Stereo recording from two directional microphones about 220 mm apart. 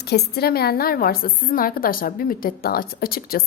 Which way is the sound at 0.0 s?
45° left (ahead or behind).